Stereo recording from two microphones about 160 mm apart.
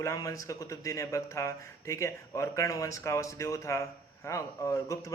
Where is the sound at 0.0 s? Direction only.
20° left (ahead or behind).